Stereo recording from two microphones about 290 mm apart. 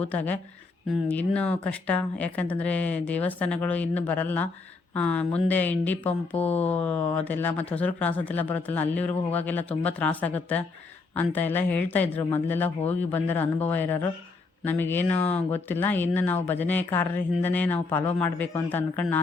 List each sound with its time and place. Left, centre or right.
0.0 s speech: centre